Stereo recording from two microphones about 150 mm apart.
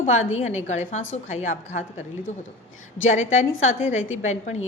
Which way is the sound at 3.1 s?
50° left (ahead or behind).